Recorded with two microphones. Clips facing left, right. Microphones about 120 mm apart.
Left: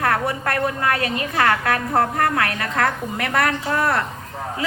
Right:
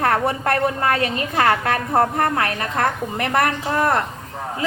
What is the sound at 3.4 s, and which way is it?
Speech, 40° right (ahead or behind).